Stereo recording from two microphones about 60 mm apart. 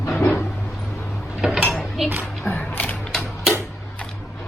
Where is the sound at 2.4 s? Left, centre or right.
Left.